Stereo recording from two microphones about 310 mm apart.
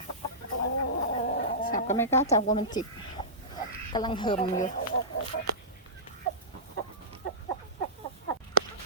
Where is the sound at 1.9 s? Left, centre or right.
Centre.